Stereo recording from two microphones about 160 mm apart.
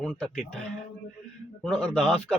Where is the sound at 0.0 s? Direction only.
5° left (ahead or behind).